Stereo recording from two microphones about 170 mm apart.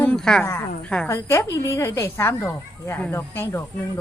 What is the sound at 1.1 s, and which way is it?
Speech, 15° left (ahead or behind).